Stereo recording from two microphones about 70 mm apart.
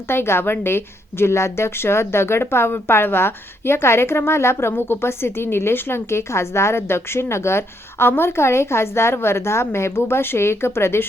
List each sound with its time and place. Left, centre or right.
0.1 s speech: left